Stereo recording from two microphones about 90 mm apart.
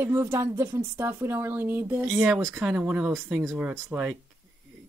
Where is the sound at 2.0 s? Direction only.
10° right (ahead or behind); by 4.1 s 25° right (ahead or behind).